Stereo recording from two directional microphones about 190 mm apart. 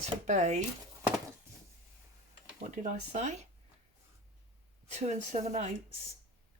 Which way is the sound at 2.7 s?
40° right (ahead or behind).